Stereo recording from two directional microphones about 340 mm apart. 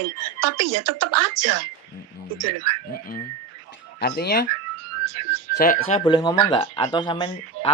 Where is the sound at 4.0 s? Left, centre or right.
Left.